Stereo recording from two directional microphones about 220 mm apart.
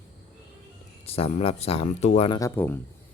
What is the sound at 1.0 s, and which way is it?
Speech, 25° left (ahead or behind).